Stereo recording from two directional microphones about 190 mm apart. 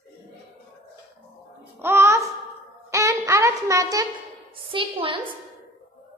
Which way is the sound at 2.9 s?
15° right (ahead or behind).